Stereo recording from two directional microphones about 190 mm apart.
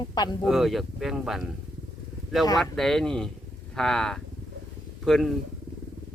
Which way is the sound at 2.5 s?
Centre (ahead or behind).